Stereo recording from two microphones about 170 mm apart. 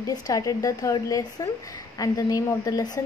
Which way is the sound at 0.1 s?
20° left (ahead or behind).